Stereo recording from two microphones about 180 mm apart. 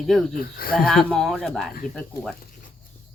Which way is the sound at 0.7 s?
Centre (ahead or behind).